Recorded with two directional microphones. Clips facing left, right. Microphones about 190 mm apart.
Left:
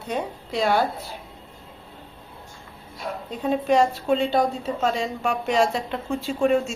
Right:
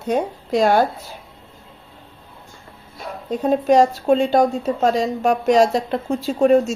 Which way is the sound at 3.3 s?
40° right (ahead or behind).